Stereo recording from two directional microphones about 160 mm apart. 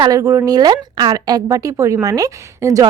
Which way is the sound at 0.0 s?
20° right (ahead or behind).